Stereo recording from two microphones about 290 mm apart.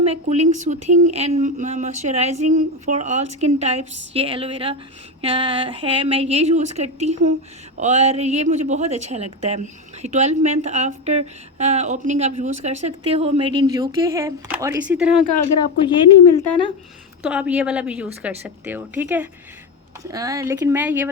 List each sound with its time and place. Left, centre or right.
0.0 s a woman's voice: right; by 15.2 s centre
17.2 s a woman's voice: centre